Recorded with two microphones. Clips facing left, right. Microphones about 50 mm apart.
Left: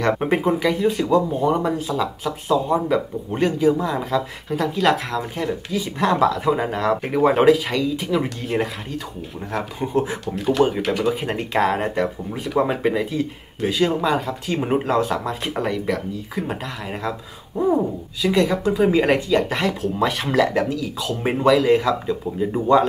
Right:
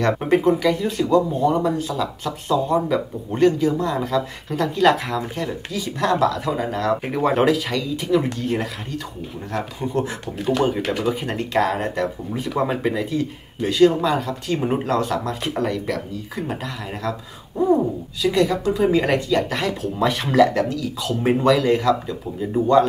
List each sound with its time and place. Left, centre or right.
0.0 s speech: centre
11.3 s speech: centre
17.6 s speech: centre